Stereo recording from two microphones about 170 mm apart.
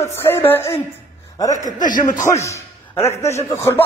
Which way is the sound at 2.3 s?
15° left (ahead or behind).